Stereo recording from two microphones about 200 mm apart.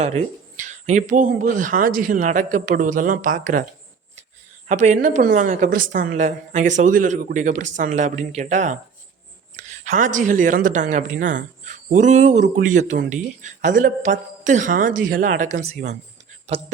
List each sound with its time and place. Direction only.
0.0 s speech: 35° right (ahead or behind)
4.7 s speech: 35° right (ahead or behind)
10.0 s speech: 40° right (ahead or behind)